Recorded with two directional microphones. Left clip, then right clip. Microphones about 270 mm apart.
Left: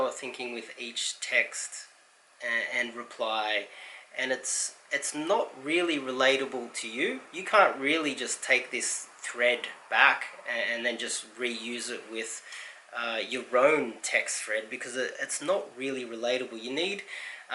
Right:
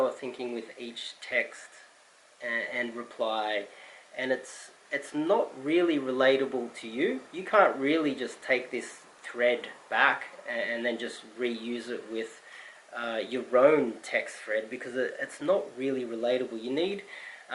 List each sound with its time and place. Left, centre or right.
0.2 s speech: centre